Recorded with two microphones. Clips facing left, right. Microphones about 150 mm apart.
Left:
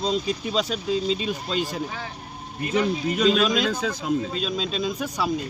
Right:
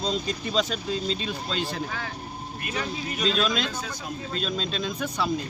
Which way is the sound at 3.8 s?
90° left.